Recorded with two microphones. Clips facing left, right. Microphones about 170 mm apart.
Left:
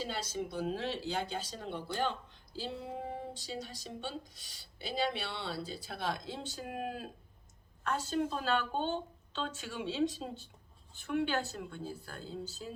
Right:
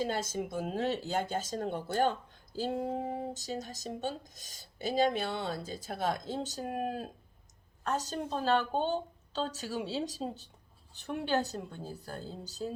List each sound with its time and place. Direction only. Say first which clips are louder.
0.0 s a woman's voice: right 4 dB; 50° right (ahead or behind)